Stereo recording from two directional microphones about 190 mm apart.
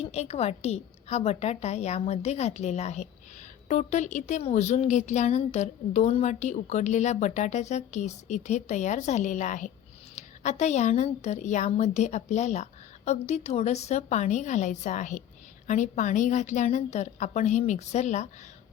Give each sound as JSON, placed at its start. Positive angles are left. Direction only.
{"t": 0.0, "sound": "a woman's voice", "side_deg": 35}